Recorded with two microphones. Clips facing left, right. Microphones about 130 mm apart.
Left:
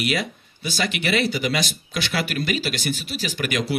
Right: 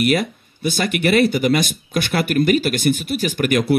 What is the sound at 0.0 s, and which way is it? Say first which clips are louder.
A man's voice: right 7 dB; 50° right (ahead or behind).